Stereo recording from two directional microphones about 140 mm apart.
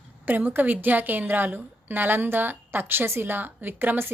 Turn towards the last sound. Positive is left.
turn(degrees=-15)  # may be behind; listen again after turning